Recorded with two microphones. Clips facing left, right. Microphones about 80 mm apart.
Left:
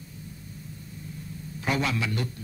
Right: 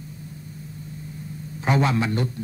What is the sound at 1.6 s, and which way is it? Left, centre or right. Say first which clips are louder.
Speech: right 6 dB; right.